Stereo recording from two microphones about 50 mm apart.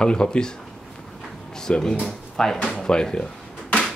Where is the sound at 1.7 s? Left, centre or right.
Centre.